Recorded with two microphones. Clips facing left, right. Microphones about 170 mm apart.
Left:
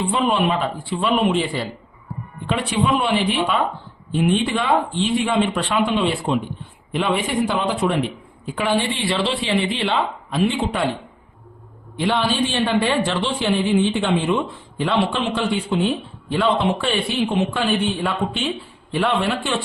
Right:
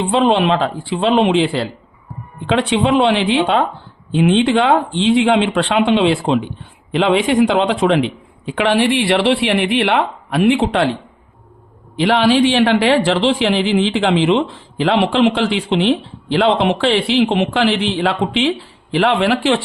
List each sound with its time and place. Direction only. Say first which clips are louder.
0.0 s a man's voice: right 5 dB; 90° right
11.9 s speech: right 7 dB; 90° right